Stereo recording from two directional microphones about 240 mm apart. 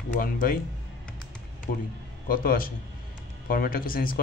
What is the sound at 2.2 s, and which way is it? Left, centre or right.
A man's voice, left.